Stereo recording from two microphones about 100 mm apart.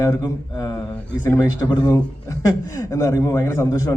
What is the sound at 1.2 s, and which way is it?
A man's voice, 30° left (ahead or behind).